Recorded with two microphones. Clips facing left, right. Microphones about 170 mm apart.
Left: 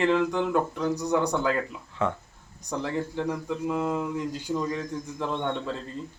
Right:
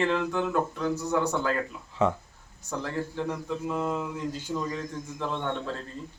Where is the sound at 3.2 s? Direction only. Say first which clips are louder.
Left 2 dB; centre (ahead or behind).